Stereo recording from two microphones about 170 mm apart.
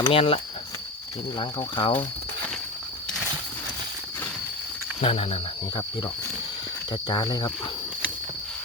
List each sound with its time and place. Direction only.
0.0 s cricket: 35° left (ahead or behind)
1.4 s speech: 30° left (ahead or behind)
4.9 s cricket: 35° left (ahead or behind)
7.1 s speech: 25° left (ahead or behind)